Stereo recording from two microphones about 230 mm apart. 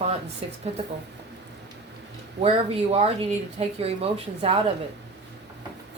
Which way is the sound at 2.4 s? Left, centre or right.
Right.